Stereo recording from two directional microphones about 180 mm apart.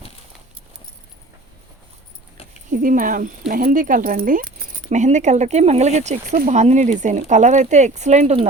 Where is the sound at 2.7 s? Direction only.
50° right (ahead or behind).